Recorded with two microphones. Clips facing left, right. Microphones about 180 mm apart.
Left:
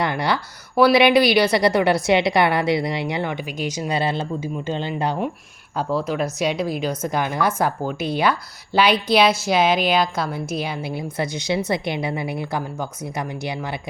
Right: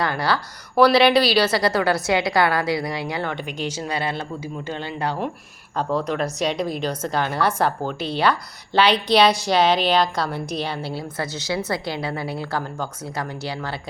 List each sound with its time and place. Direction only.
0.0 s a woman's voice: 20° left (ahead or behind)
5.7 s a woman's voice: 5° left (ahead or behind)